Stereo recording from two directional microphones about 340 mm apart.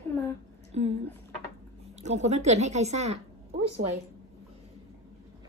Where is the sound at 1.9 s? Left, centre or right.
Centre.